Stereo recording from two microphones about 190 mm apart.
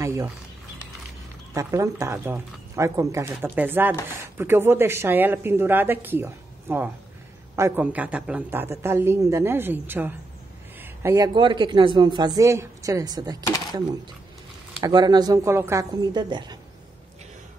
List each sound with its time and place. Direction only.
0.0 s speech: 15° right (ahead or behind)
1.5 s speech: 15° right (ahead or behind)
14.8 s speech: 20° right (ahead or behind)